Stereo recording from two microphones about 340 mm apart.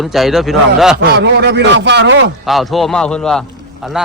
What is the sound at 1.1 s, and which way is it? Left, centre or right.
A man's voice, right.